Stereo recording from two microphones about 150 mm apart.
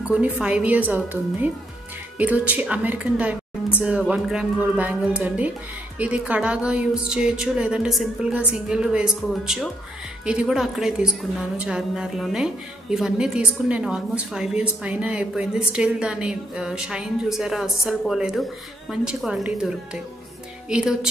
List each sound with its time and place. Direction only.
0.0 s a woman's voice: 5° right (ahead or behind)